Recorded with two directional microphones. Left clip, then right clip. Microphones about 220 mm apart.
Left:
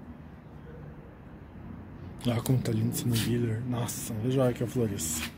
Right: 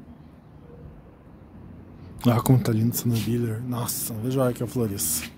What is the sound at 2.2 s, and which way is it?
Speech, 50° right (ahead or behind).